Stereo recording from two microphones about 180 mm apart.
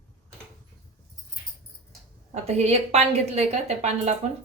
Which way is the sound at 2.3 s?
35° right (ahead or behind).